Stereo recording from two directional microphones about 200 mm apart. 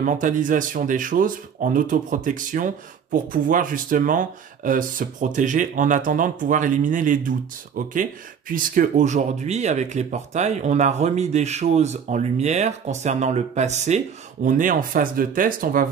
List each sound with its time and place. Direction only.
0.0 s speech: 40° right (ahead or behind)